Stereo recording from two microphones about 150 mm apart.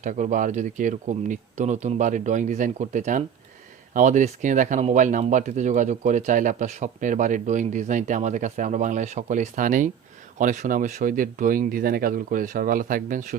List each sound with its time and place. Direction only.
0.0 s speech: 55° right (ahead or behind)